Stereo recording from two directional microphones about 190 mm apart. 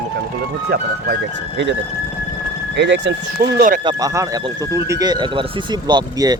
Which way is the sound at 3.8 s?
15° right (ahead or behind).